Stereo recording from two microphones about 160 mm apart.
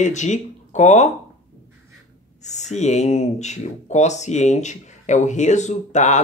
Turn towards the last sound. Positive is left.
turn(degrees=45)  # may be behind; listen again after turning